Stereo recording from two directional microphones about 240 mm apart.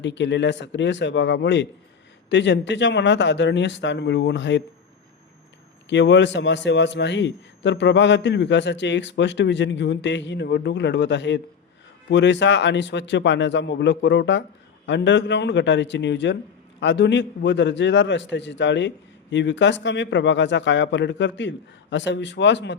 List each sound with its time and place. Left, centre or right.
0.0 s a man's voice: left
5.9 s a man's voice: left